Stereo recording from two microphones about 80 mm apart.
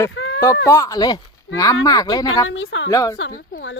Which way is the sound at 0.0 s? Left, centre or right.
Left.